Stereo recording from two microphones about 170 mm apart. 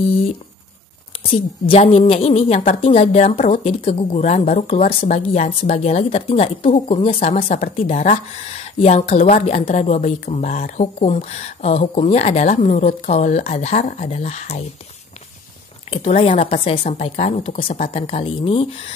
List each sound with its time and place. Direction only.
1.2 s a woman's voice: 35° left (ahead or behind)
15.9 s a woman's voice: 35° left (ahead or behind)